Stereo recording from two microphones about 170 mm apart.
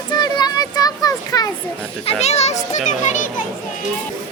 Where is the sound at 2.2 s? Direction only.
40° left (ahead or behind).